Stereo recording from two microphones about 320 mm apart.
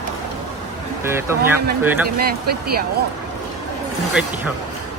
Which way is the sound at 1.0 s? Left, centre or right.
Centre.